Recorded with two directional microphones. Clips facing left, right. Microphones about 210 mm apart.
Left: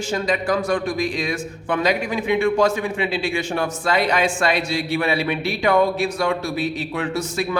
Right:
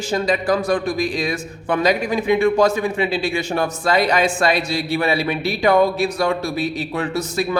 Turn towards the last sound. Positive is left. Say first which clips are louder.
# right 2 dB
turn(degrees=-35)  # may be behind; listen again after turning